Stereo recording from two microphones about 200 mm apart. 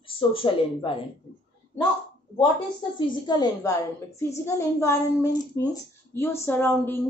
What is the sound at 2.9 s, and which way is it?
A woman's voice, 25° left (ahead or behind).